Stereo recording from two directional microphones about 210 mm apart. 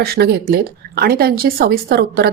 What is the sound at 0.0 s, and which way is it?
A woman's voice, 50° right (ahead or behind).